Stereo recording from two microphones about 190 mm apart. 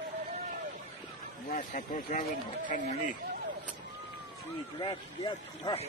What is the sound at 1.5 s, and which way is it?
Speech, 45° left (ahead or behind).